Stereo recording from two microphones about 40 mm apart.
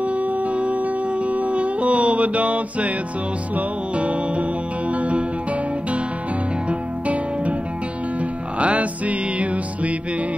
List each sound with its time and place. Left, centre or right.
1.3 s music: right
6.7 s music: right
8.5 s music: right